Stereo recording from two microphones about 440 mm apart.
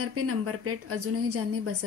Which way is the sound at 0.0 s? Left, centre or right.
Right.